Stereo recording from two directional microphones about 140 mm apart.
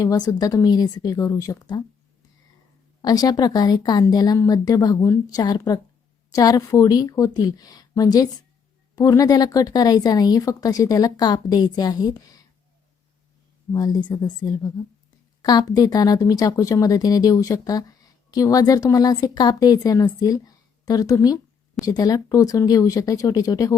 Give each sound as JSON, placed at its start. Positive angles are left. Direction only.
{"t": 0.0, "sound": "speech", "side_deg": 25}
{"t": 3.0, "sound": "speech", "side_deg": 25}
{"t": 13.7, "sound": "speech", "side_deg": 25}